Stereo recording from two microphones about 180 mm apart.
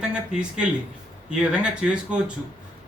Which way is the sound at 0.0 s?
5° right (ahead or behind).